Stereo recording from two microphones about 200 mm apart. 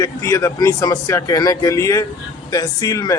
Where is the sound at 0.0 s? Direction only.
15° left (ahead or behind).